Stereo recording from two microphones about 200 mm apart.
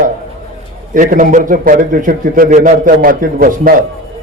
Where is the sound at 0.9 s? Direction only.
40° right (ahead or behind).